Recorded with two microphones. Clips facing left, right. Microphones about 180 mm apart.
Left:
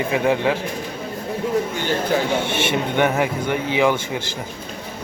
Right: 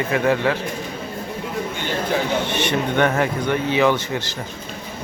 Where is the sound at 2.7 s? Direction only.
10° left (ahead or behind).